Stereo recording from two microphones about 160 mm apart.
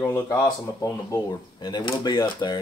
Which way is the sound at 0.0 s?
20° left (ahead or behind).